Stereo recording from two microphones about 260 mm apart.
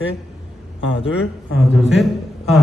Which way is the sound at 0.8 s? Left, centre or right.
Left.